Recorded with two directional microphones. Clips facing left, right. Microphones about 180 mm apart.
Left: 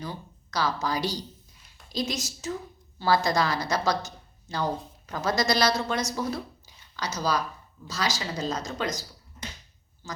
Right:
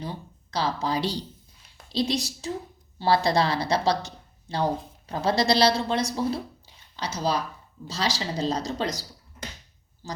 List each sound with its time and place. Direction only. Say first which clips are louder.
0.0 s a woman's voice: right 2 dB; 30° right (ahead or behind)